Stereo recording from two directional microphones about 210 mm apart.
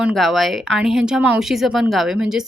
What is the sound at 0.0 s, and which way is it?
Speech, centre (ahead or behind).